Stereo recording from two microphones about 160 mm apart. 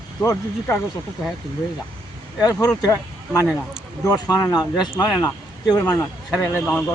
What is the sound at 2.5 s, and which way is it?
Speech, 20° left (ahead or behind).